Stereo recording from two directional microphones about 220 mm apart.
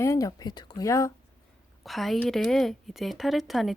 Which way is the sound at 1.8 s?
Centre (ahead or behind).